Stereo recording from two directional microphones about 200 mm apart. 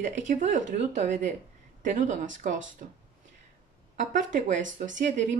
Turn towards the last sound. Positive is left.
turn(degrees=-40)  # may be behind; listen again after turning